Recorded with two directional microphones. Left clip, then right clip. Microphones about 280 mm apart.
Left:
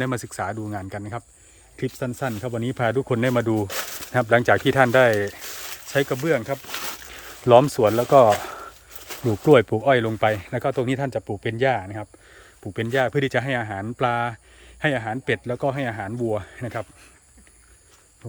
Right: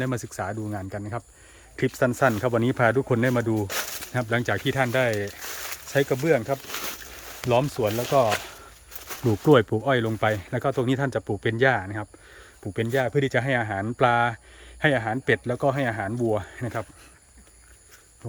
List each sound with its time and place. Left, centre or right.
0.0 s speech: centre
5.9 s speech: centre
7.5 s speech: centre
9.2 s speech: centre